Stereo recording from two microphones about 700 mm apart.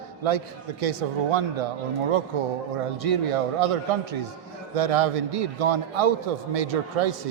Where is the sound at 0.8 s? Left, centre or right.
Right.